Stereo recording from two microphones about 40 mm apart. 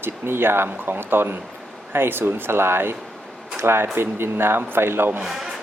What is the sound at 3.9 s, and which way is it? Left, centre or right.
Speech, right.